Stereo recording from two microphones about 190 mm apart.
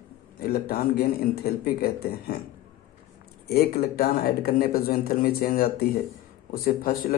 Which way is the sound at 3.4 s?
55° left (ahead or behind).